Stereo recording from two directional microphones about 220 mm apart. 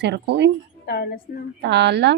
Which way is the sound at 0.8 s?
45° left (ahead or behind).